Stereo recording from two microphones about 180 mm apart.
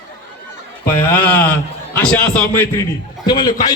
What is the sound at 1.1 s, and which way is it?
A man's voice, 10° left (ahead or behind).